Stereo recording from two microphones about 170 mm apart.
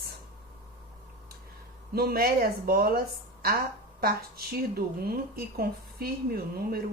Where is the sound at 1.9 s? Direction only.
65° right (ahead or behind).